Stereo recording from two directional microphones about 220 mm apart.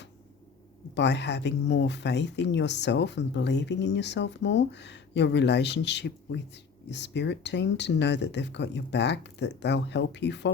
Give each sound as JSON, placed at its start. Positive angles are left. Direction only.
{"t": 0.9, "sound": "speech", "side_deg": 50}